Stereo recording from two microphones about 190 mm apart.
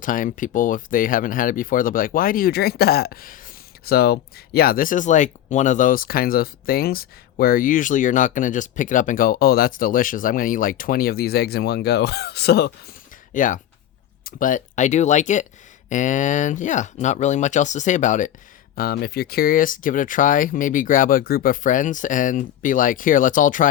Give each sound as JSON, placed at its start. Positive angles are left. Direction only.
{"t": 0.0, "sound": "speech", "side_deg": 45}
{"t": 13.3, "sound": "speech", "side_deg": 45}
{"t": 18.8, "sound": "speech", "side_deg": 55}